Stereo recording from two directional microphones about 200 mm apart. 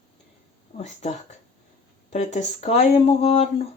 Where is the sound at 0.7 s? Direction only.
35° left (ahead or behind).